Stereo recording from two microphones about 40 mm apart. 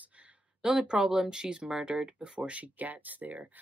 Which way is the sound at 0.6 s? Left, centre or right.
Centre.